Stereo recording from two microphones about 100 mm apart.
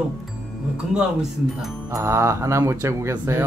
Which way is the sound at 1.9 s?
30° right (ahead or behind).